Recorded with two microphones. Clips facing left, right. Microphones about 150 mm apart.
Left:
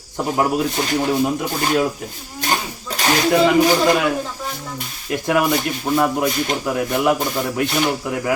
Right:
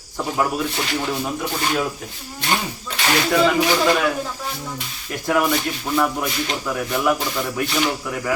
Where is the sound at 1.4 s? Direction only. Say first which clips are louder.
Left 2 dB; 45° left (ahead or behind).